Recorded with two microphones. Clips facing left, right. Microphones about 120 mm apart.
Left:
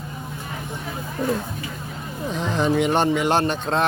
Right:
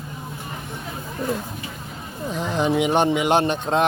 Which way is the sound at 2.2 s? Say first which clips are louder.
Even; 10° right (ahead or behind).